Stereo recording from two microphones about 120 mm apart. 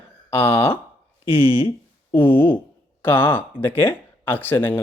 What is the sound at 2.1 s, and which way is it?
Speech, 15° left (ahead or behind).